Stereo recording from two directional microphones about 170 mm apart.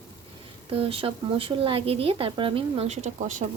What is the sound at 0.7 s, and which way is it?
Speech, 35° right (ahead or behind).